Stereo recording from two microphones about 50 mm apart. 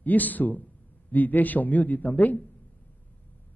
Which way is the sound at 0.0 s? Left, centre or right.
Left.